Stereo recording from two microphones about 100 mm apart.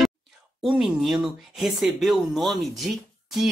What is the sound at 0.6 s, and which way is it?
Speech, 5° right (ahead or behind).